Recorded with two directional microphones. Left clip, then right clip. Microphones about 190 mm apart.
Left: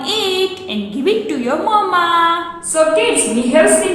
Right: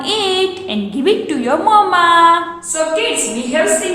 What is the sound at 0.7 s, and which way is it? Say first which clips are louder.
A woman's voice: right 2 dB; 20° right (ahead or behind).